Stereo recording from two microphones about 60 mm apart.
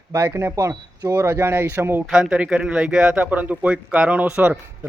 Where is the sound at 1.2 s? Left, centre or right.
Right.